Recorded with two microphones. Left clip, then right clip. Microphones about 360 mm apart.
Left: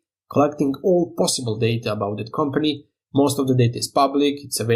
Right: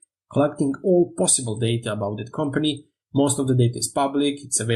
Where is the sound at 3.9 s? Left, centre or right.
Centre.